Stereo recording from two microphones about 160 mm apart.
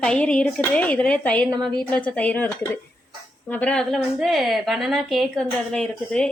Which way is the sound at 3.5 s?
5° left (ahead or behind).